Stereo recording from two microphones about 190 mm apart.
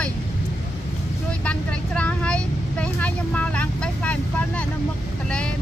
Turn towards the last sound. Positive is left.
turn(degrees=5)  # may be behind; listen again after turning